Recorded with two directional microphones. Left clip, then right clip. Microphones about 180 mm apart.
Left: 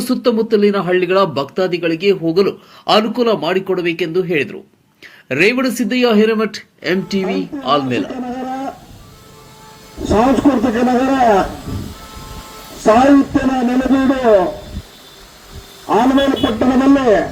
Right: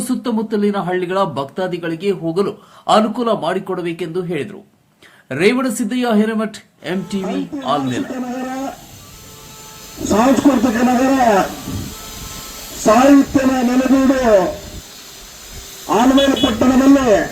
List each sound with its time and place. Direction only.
0.1 s speech: centre (ahead or behind)
8.1 s a sound: 35° right (ahead or behind)
10.0 s speech: 30° right (ahead or behind)
13.1 s speech: 35° right (ahead or behind)
14.1 s speech: 50° right (ahead or behind)
15.9 s speech: 35° right (ahead or behind)
16.3 s a sound: 60° right (ahead or behind)
16.6 s speech: 35° right (ahead or behind)